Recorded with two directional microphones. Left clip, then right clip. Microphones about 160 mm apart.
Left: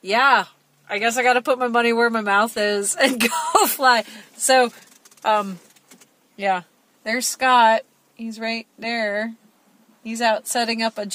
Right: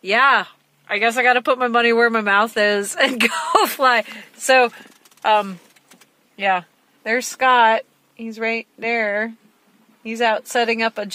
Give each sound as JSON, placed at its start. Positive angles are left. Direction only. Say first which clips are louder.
{"t": 0.0, "sound": "speech", "louder": "right 1 dB", "side_deg": -10}
{"t": 5.2, "sound": "speech", "louder": "right 3 dB", "side_deg": 0}
{"t": 6.3, "sound": "speech", "louder": "right 3 dB", "side_deg": -20}